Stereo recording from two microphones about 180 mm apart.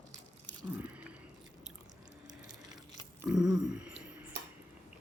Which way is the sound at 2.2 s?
20° right (ahead or behind).